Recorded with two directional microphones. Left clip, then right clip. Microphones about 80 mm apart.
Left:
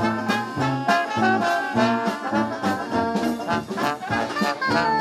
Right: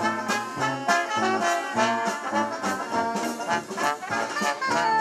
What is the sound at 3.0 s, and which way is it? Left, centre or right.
Music, right.